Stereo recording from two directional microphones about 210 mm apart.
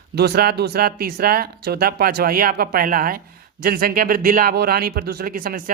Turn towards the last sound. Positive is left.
turn(degrees=-40)  # may be behind; listen again after turning